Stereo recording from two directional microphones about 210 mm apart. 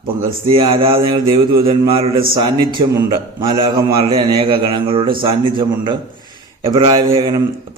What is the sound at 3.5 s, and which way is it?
A man's voice, 20° right (ahead or behind).